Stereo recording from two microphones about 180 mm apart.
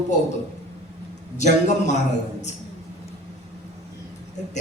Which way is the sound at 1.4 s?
40° left (ahead or behind).